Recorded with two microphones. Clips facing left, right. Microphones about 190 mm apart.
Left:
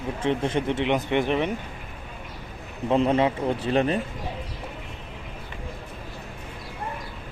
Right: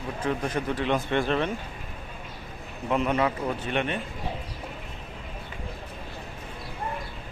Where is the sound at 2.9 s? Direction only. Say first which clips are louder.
Left 4 dB; 30° left (ahead or behind).